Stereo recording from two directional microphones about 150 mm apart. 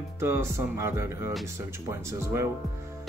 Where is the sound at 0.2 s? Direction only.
20° right (ahead or behind).